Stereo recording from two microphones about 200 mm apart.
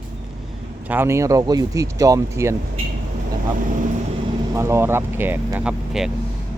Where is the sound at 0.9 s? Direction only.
10° right (ahead or behind).